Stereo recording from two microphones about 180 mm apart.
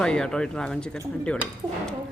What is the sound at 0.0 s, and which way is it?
Speech, 5° left (ahead or behind).